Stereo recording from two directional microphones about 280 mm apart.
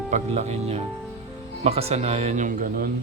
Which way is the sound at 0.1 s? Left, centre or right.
Right.